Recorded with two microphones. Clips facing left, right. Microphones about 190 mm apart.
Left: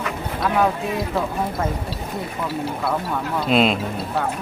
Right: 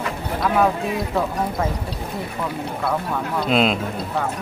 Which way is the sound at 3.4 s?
Centre (ahead or behind).